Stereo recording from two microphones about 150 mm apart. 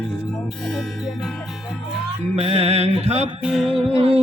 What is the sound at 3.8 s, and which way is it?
Mantra, 40° right (ahead or behind).